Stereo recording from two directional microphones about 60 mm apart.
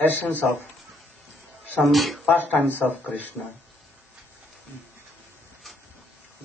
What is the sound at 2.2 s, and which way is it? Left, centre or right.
Speech, left.